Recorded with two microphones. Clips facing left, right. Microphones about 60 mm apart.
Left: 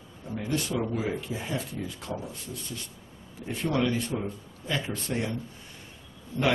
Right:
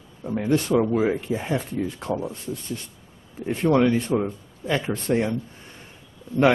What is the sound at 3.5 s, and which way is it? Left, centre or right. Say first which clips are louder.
Speech: right 8 dB; right.